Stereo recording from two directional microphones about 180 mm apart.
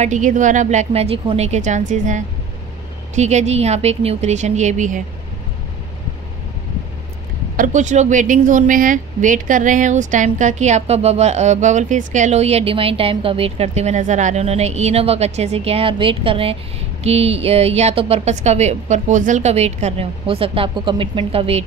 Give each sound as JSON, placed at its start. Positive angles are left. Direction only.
{"t": 0.0, "sound": "a woman's voice", "side_deg": -45}
{"t": 7.5, "sound": "a woman's voice", "side_deg": -45}